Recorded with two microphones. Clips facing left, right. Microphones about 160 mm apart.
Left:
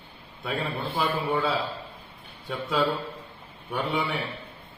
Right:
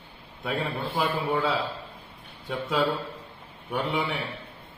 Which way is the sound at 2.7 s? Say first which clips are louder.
Even; 5° right (ahead or behind).